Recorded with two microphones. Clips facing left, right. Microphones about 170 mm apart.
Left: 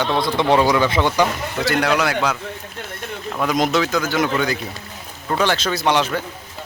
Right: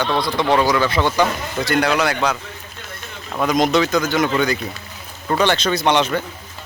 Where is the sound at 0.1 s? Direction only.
25° left (ahead or behind).